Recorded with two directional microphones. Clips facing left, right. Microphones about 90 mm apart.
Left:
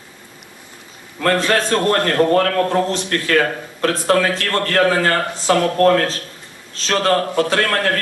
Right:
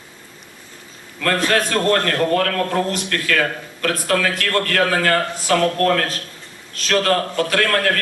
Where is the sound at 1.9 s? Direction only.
35° left (ahead or behind).